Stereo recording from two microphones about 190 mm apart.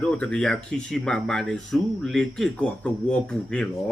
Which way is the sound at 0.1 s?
5° left (ahead or behind).